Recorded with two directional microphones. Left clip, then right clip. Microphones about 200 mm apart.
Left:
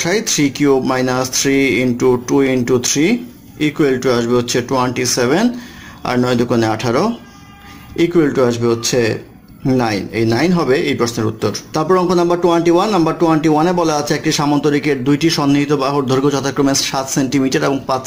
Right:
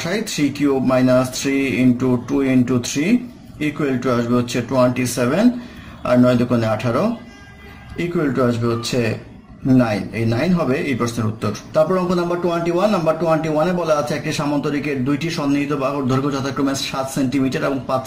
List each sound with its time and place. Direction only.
0.0 s speech: 40° left (ahead or behind)